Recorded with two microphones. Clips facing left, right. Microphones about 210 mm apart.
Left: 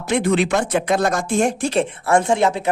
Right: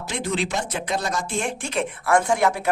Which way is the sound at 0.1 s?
60° left (ahead or behind).